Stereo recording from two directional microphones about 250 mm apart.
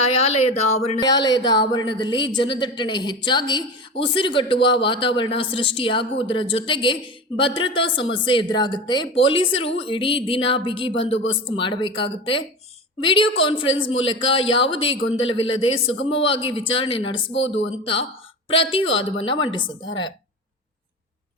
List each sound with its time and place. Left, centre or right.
0.1 s a man's voice: left
0.9 s a woman's voice: centre
17.3 s speech: left
18.5 s a man's voice: left